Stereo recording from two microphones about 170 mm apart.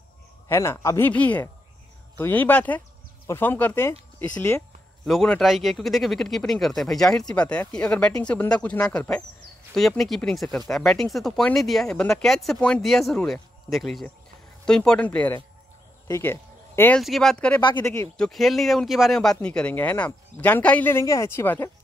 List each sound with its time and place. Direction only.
0.5 s speech: 15° left (ahead or behind)
5.0 s speech: centre (ahead or behind)
17.0 s speech: centre (ahead or behind)
17.6 s speech: 25° left (ahead or behind)
18.1 s speech: centre (ahead or behind)